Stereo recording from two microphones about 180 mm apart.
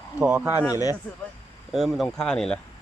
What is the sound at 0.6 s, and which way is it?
Speech, 20° left (ahead or behind).